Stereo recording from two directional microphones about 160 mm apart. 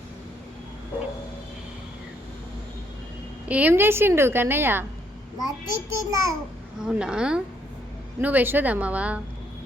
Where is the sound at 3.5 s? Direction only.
10° right (ahead or behind).